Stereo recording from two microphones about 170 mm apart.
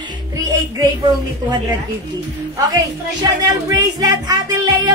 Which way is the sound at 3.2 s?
20° right (ahead or behind).